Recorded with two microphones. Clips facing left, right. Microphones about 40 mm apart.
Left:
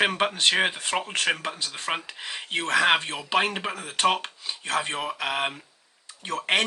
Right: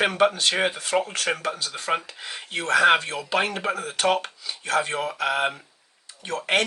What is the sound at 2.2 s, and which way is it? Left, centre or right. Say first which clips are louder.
Speech: left 1 dB; left.